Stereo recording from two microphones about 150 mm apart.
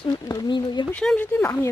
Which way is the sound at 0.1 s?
25° left (ahead or behind).